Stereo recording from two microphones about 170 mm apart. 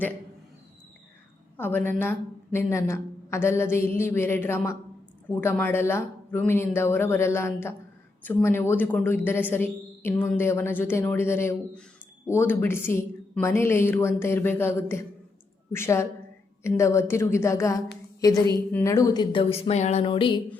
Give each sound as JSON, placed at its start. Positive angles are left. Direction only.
{"t": 1.5, "sound": "a woman's voice", "side_deg": 10}